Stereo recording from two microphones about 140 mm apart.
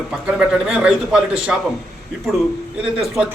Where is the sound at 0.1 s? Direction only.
5° right (ahead or behind).